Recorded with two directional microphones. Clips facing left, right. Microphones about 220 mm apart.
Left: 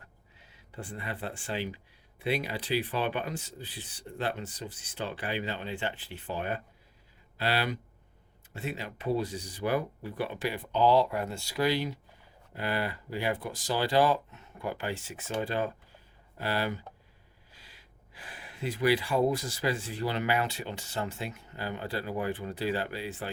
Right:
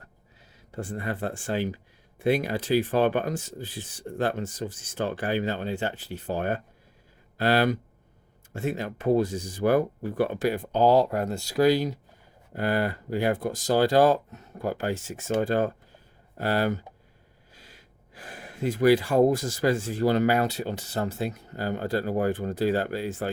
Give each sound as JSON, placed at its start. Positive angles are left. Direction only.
{"t": 0.5, "sound": "speech", "side_deg": -45}